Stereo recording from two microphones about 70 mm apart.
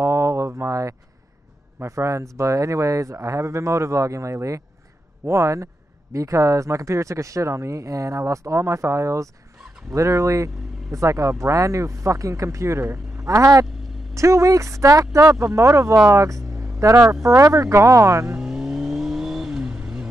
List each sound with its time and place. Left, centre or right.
0.0 s a sound: right
1.8 s speech: right
16.1 s vehicle: right
17.4 s speech: right
18.4 s vehicle: centre